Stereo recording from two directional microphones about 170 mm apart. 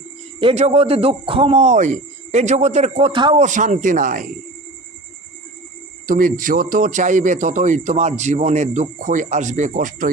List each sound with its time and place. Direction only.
0.3 s a man's voice: 35° right (ahead or behind)
3.4 s speech: 45° right (ahead or behind)
6.1 s speech: 55° right (ahead or behind)